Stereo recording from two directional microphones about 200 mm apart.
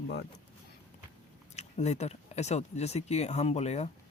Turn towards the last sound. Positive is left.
turn(degrees=35)  # may be behind; listen again after turning